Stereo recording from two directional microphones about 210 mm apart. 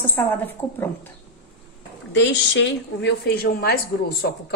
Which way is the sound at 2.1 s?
60° left (ahead or behind).